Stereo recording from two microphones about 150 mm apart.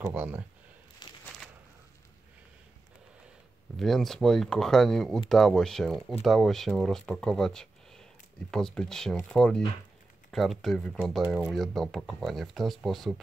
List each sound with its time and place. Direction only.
0.0 s speech: 10° right (ahead or behind)
1.0 s a sound: 30° left (ahead or behind)
3.7 s speech: centre (ahead or behind)